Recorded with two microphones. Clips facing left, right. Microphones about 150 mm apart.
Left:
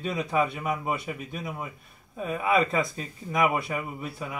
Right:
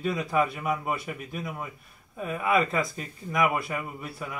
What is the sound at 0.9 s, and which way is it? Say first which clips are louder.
Speech: left 1 dB; 20° left (ahead or behind).